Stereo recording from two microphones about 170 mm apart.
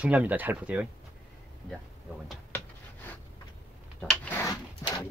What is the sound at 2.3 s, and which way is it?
Dishes, 10° left (ahead or behind).